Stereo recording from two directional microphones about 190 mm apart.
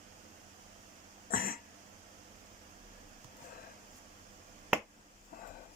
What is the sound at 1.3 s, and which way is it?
Cough, 50° left (ahead or behind).